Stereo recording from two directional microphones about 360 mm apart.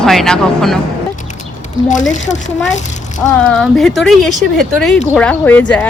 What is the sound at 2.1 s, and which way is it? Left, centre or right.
Speech, centre.